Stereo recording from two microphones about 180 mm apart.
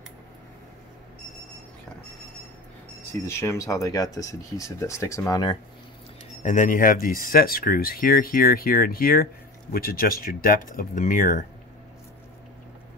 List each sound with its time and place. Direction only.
3.0 s speech: 15° left (ahead or behind)
6.4 s speech: 45° left (ahead or behind)